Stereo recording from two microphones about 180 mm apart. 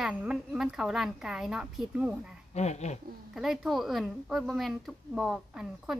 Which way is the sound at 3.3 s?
Centre (ahead or behind).